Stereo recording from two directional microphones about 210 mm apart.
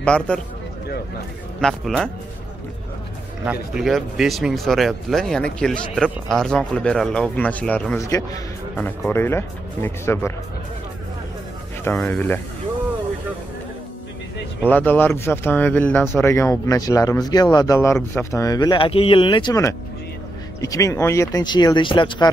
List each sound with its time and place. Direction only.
0.0 s speech: 5° left (ahead or behind)
1.6 s speech: centre (ahead or behind)
3.7 s speech: centre (ahead or behind)
11.8 s speech: 5° left (ahead or behind)
14.6 s speech: 10° left (ahead or behind); by 22.3 s 25° left (ahead or behind)